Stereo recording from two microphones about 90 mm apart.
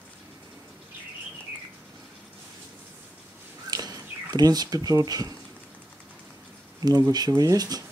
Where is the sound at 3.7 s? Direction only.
45° right (ahead or behind).